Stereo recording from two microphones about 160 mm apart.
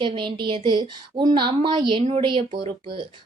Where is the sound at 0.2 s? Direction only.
30° right (ahead or behind).